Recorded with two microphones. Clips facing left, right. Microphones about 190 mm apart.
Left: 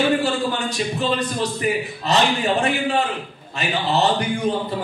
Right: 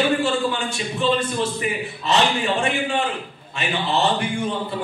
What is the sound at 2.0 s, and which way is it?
A man's voice, 35° left (ahead or behind).